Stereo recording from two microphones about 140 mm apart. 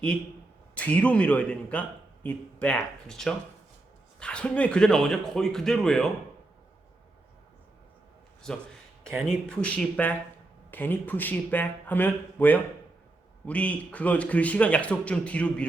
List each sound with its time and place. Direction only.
0.8 s a man's voice: 10° left (ahead or behind)
8.4 s a man's voice: 5° left (ahead or behind)